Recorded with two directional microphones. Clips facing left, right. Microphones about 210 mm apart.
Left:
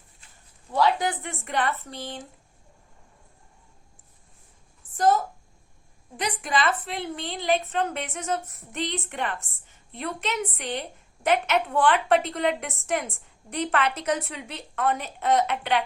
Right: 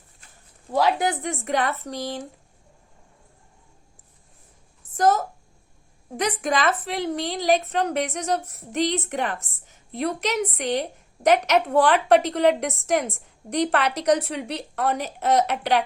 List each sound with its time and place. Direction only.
0.7 s a woman's voice: 40° right (ahead or behind)
4.9 s a woman's voice: 45° right (ahead or behind)